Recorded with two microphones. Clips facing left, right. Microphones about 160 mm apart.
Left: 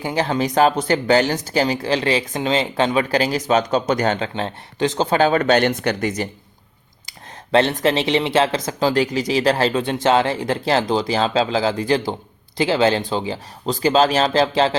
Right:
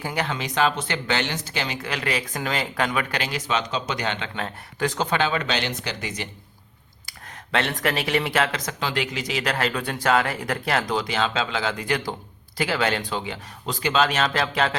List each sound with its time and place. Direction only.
0.0 s speech: 30° left (ahead or behind)
4.4 s speech: 25° left (ahead or behind); by 6.2 s 50° left (ahead or behind)
7.5 s speech: 30° left (ahead or behind)